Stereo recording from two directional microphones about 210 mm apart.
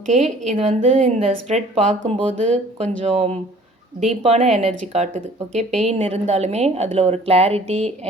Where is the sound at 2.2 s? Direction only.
5° left (ahead or behind).